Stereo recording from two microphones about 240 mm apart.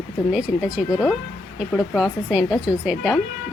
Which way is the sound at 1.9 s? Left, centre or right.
Centre.